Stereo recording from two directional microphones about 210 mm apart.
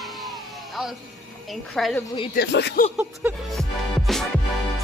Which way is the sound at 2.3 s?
50° left (ahead or behind).